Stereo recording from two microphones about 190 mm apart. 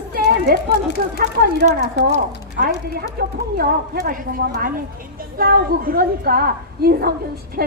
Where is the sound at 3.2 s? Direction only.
55° right (ahead or behind).